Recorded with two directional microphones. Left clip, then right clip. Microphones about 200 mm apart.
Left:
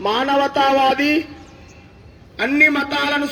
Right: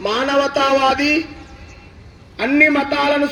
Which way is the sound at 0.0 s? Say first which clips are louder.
Even; 45° left (ahead or behind).